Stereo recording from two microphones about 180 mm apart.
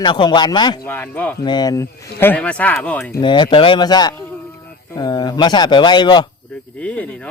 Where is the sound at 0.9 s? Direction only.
10° left (ahead or behind).